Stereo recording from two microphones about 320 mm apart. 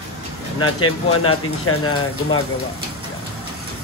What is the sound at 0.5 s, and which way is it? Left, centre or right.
Speech, left.